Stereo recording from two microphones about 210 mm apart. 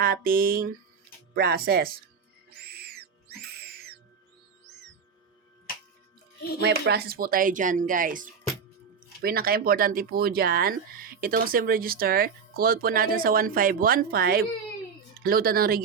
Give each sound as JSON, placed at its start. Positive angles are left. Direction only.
{"t": 0.0, "sound": "speech", "side_deg": -45}
{"t": 2.6, "sound": "music", "side_deg": -50}
{"t": 6.6, "sound": "speech", "side_deg": -55}